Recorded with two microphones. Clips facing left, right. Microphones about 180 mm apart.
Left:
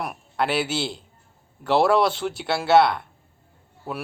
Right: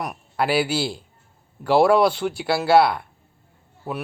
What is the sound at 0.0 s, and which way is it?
A man's voice, centre (ahead or behind).